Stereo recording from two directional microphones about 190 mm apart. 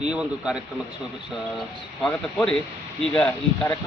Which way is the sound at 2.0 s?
5° left (ahead or behind).